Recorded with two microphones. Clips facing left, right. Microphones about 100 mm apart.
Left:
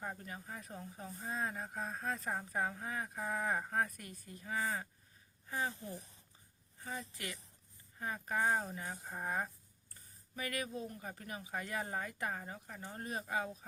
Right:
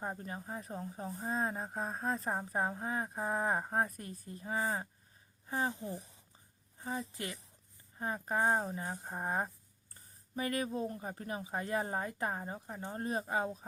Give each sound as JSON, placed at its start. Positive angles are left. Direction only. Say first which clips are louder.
{"t": 0.0, "sound": "a woman's voice", "louder": "right 4 dB", "side_deg": -30}
{"t": 6.7, "sound": "a sound", "louder": "right 5 dB", "side_deg": -25}
{"t": 7.9, "sound": "a woman's voice", "louder": "right 3 dB", "side_deg": -30}